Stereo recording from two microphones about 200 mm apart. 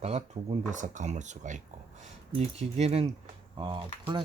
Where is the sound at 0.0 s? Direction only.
35° right (ahead or behind).